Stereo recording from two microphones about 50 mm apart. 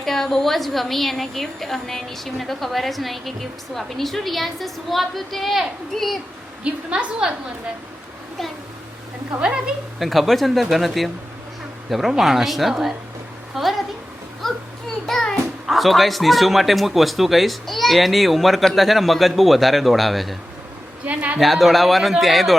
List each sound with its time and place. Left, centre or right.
0.0 s a man's voice: centre
6.7 s a woman's voice: right
10.0 s a man's voice: centre
13.6 s a sound: centre
14.4 s children playing: centre
15.0 s a sound: centre
15.6 s a man's voice: centre
21.0 s speech: right
21.3 s a man's voice: centre